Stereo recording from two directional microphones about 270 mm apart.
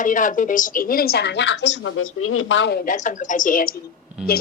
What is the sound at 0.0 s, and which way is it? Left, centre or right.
A woman's voice, left.